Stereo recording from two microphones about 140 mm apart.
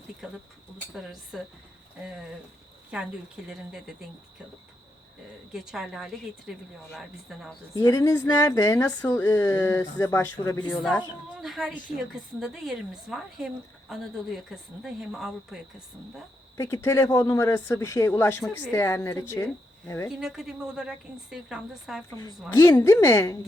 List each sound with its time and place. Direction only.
0.2 s speech: 5° right (ahead or behind)
2.9 s speech: 10° right (ahead or behind)
5.5 s speech: 5° right (ahead or behind)
7.8 s speech: 25° left (ahead or behind)
11.3 s speech: centre (ahead or behind)
16.6 s speech: 20° left (ahead or behind)
20.1 s speech: 5° right (ahead or behind)
22.1 s speech: 20° left (ahead or behind)